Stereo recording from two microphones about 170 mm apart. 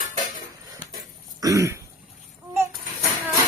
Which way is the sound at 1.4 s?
20° right (ahead or behind).